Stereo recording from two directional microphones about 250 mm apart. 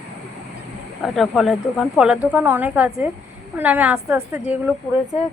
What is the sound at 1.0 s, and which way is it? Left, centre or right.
A woman's voice, centre.